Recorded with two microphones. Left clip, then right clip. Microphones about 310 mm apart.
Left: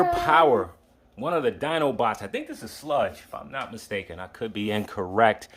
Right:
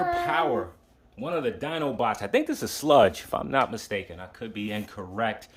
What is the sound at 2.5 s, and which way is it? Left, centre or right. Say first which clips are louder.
Speech: right 6 dB; right.